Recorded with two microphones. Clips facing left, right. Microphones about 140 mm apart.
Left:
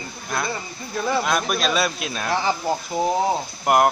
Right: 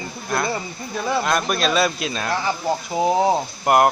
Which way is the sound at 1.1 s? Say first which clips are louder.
Right 1 dB; centre (ahead or behind).